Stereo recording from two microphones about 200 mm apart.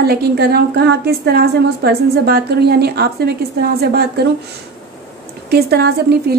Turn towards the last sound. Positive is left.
turn(degrees=-55)  # may be behind; listen again after turning